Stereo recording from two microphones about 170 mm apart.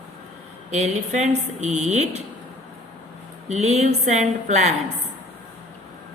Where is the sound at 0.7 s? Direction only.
45° right (ahead or behind).